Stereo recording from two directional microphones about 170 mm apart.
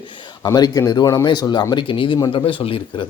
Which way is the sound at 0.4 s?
20° left (ahead or behind).